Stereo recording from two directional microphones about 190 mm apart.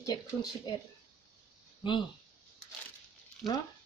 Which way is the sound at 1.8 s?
25° left (ahead or behind).